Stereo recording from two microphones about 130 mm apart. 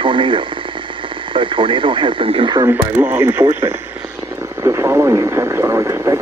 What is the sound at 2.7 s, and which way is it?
Speech, 15° right (ahead or behind).